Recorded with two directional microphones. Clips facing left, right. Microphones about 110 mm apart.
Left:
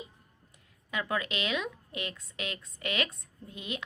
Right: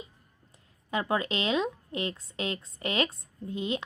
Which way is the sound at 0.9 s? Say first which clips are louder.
Right 4 dB; 30° right (ahead or behind).